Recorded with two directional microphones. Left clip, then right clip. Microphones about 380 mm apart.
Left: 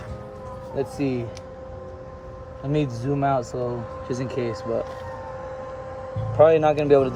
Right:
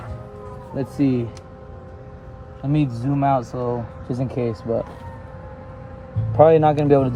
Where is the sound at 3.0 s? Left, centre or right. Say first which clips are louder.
Right 4 dB; centre.